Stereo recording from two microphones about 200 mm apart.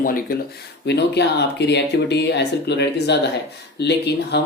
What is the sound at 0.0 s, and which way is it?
Speech, 45° left (ahead or behind).